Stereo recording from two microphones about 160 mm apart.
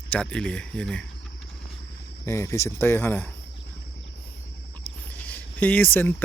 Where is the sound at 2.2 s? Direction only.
20° left (ahead or behind).